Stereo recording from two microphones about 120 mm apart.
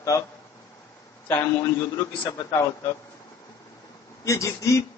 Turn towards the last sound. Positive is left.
turn(degrees=25)  # may be behind; listen again after turning